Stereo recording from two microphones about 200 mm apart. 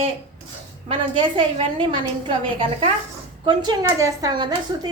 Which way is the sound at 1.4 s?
25° right (ahead or behind).